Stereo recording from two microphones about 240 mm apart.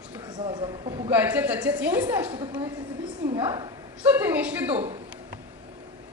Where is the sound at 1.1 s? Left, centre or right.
Centre.